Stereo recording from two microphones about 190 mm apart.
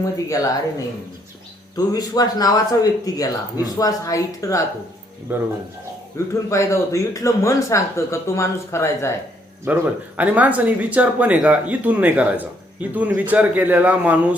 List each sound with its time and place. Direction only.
0.0 s speech: 15° left (ahead or behind)
1.7 s speech: 20° left (ahead or behind)
5.3 s speech: 10° right (ahead or behind)
6.1 s speech: 15° left (ahead or behind)
9.6 s speech: 10° right (ahead or behind)